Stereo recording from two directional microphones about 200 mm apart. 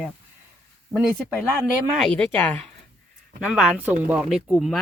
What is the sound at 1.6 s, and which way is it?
Speech, centre (ahead or behind).